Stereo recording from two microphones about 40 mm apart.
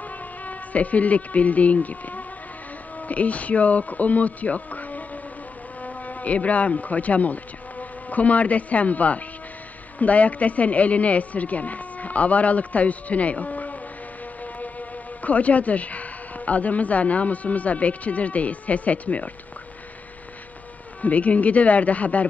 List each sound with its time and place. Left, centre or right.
0.5 s a woman's voice: left
21.0 s a woman's voice: left